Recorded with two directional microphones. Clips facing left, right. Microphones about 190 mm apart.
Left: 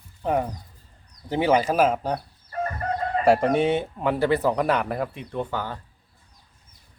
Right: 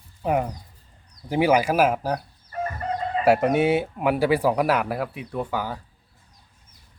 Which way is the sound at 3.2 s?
5° right (ahead or behind).